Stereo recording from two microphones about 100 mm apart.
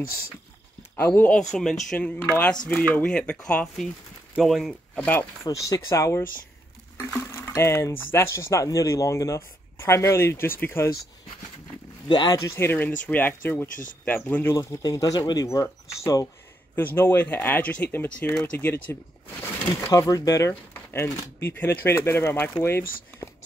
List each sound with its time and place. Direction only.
0.9 s speech: 20° left (ahead or behind)
1.5 s speech: 5° left (ahead or behind)
2.0 s speech: 15° left (ahead or behind)
4.9 s speech: 15° left (ahead or behind)
5.4 s speech: 30° left (ahead or behind)
12.1 s speech: 45° left (ahead or behind)
12.4 s speech: 30° left (ahead or behind)
16.7 s speech: 20° left (ahead or behind)
19.9 s speech: 35° left (ahead or behind)